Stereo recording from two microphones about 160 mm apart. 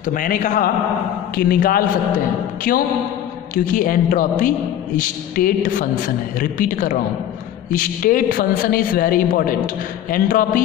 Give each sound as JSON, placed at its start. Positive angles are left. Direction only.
{"t": 0.0, "sound": "a man's voice", "side_deg": 55}
{"t": 1.3, "sound": "a man's voice", "side_deg": 70}